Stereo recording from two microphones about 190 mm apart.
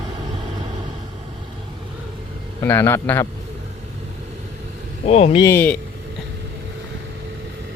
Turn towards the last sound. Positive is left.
turn(degrees=10)  # may be behind; listen again after turning